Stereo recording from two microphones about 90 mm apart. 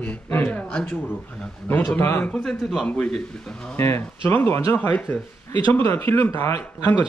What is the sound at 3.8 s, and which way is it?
Speech, 25° left (ahead or behind).